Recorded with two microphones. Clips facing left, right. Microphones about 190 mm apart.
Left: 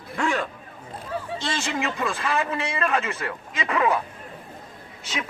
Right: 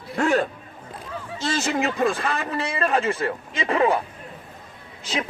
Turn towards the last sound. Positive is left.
turn(degrees=-35)  # may be behind; listen again after turning